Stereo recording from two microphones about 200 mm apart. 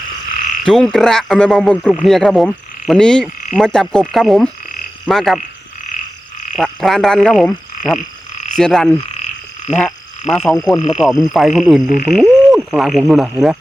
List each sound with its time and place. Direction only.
0.6 s speech: 5° left (ahead or behind)
6.6 s speech: centre (ahead or behind)
7.8 s frog: 40° left (ahead or behind)
8.5 s speech: centre (ahead or behind)
10.7 s speech: 20° left (ahead or behind)
10.9 s speech: centre (ahead or behind)
12.0 s frog: centre (ahead or behind)